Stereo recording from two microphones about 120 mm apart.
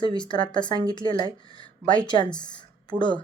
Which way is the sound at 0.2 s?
40° left (ahead or behind).